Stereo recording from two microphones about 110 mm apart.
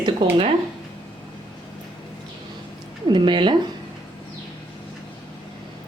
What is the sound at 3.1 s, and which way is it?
Speech, 45° right (ahead or behind).